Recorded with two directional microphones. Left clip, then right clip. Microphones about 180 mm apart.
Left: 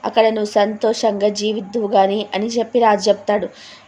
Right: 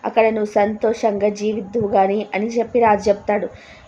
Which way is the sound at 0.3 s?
15° left (ahead or behind).